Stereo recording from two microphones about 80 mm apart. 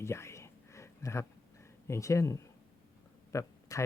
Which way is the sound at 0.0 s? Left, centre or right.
Left.